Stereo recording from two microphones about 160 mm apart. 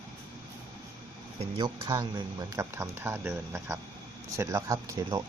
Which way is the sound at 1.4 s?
30° right (ahead or behind).